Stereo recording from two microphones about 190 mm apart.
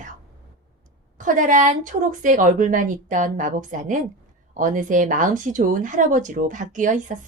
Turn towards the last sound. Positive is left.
turn(degrees=-40)  # may be behind; listen again after turning